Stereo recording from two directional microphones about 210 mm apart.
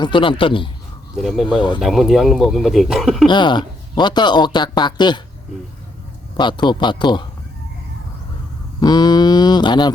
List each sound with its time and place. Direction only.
0.0 s speech: 25° left (ahead or behind)
1.1 s speech: centre (ahead or behind)
1.5 s speech: 20° left (ahead or behind)
1.8 s speech: centre (ahead or behind)
3.2 s speech: 20° left (ahead or behind)
6.3 s speech: 20° left (ahead or behind)
8.8 s a sound: 20° left (ahead or behind)